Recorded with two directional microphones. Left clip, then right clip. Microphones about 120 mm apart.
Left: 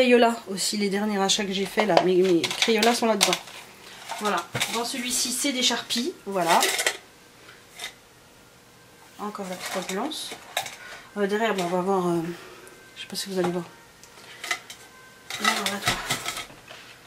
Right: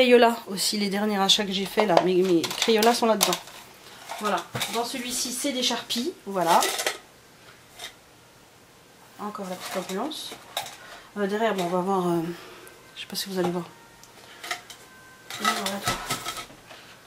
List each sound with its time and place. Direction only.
0.0 s speech: 15° right (ahead or behind); by 7.0 s centre (ahead or behind)
9.2 s speech: centre (ahead or behind)
12.9 s a sound: 15° right (ahead or behind)
13.3 s speech: centre (ahead or behind)
15.2 s dishes: centre (ahead or behind)